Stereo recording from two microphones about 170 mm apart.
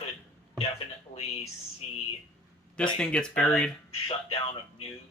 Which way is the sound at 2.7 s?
5° left (ahead or behind).